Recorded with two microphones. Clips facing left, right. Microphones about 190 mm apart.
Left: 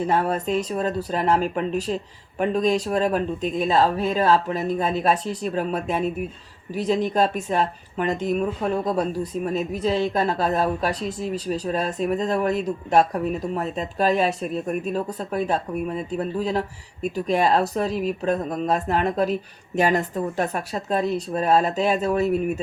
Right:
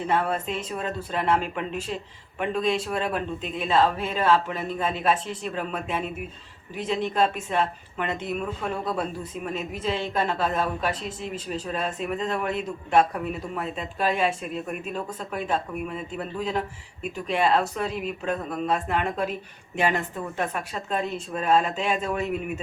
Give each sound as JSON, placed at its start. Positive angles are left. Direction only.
{"t": 0.0, "sound": "speech", "side_deg": 40}